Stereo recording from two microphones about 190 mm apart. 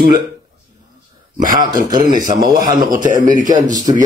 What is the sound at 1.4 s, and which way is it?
Speech, 45° right (ahead or behind).